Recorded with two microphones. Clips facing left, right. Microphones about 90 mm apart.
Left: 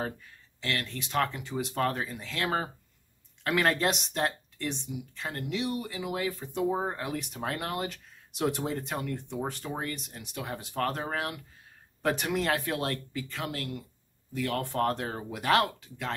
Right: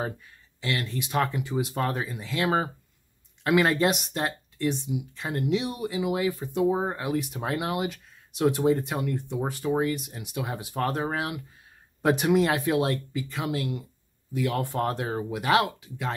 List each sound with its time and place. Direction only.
0.6 s speech: 10° right (ahead or behind)
4.9 s speech: 15° right (ahead or behind)